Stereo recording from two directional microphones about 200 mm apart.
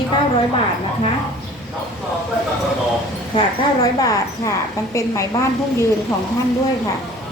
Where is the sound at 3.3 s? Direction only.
20° left (ahead or behind).